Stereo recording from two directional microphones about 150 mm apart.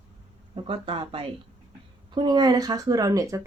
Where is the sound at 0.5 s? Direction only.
35° right (ahead or behind); by 3.4 s 20° right (ahead or behind).